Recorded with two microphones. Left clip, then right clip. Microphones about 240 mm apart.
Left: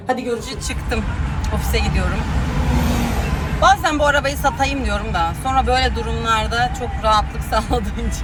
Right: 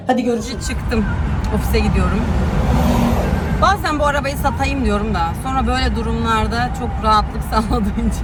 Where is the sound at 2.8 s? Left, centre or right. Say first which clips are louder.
Right 6 dB; right.